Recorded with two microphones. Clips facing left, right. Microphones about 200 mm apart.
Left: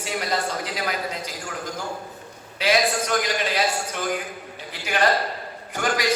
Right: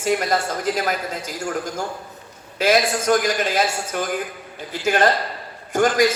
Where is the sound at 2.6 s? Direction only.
45° right (ahead or behind).